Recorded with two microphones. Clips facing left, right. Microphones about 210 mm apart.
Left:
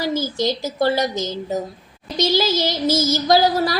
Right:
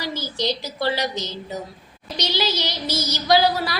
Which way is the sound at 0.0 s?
45° left (ahead or behind).